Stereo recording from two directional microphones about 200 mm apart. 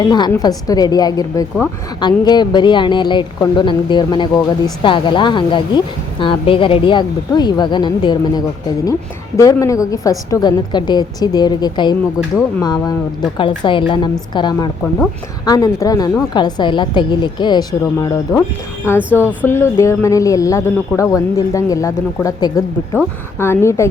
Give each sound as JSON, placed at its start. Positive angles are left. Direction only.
{"t": 0.1, "sound": "speech", "side_deg": 20}